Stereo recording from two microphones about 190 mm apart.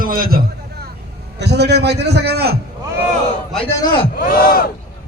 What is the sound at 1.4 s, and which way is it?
A man's voice, 60° right (ahead or behind).